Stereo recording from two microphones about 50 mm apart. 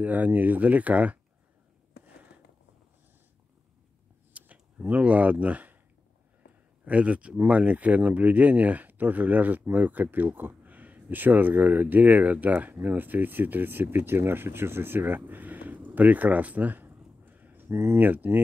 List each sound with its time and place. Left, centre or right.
0.0 s speech: right
4.3 s a sound: right
6.8 s speech: right
17.2 s a sound: right
17.6 s speech: right
17.9 s speech: right